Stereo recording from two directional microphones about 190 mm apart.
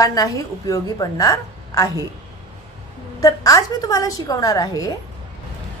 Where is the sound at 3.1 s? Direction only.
15° left (ahead or behind).